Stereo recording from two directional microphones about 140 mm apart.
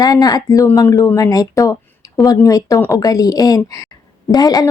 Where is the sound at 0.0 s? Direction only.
25° left (ahead or behind).